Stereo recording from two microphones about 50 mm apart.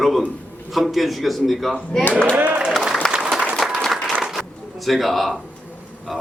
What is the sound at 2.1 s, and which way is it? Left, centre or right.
Speech, centre.